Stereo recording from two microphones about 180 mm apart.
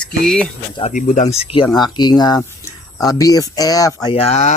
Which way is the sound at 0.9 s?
40° left (ahead or behind).